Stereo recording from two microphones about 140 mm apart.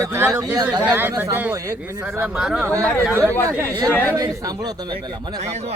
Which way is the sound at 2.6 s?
20° right (ahead or behind).